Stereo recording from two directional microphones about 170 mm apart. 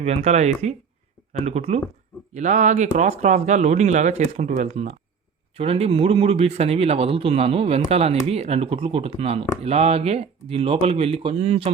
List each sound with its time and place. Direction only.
0.0 s speech: 40° right (ahead or behind)